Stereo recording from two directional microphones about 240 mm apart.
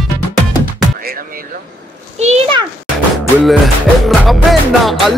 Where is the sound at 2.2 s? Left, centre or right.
Right.